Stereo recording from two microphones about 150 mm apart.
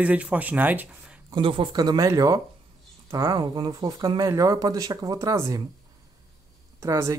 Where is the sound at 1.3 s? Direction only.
35° right (ahead or behind).